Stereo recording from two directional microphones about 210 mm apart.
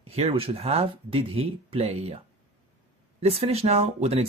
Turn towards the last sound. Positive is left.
turn(degrees=-30)  # may be behind; listen again after turning